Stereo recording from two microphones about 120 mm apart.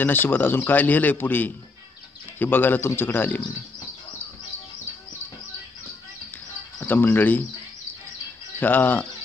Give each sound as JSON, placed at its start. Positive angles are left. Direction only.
{"t": 0.0, "sound": "a man's voice", "side_deg": 15}
{"t": 6.8, "sound": "a man's voice", "side_deg": 15}
{"t": 8.5, "sound": "a man's voice", "side_deg": 15}